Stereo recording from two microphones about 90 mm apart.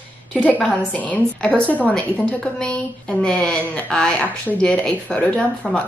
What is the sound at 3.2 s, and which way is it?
A woman's voice, 10° left (ahead or behind).